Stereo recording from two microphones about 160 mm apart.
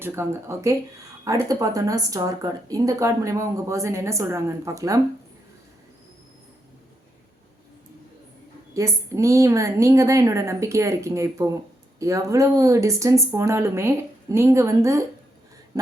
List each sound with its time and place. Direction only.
0.0 s speech: 15° right (ahead or behind)
8.7 s speech: 20° right (ahead or behind)